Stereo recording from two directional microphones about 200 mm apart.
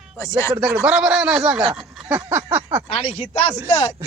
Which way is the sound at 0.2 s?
15° left (ahead or behind).